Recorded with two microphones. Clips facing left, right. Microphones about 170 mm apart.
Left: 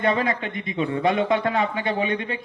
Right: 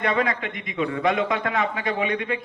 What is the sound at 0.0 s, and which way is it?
A man's voice, 30° left (ahead or behind).